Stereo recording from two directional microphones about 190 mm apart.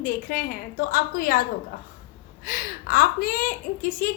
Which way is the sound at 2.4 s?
50° left (ahead or behind).